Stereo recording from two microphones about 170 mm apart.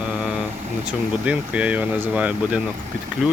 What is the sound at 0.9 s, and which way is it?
Speech, 10° right (ahead or behind).